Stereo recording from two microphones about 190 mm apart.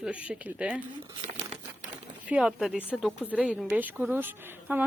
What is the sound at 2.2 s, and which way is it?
A woman's voice, 5° right (ahead or behind).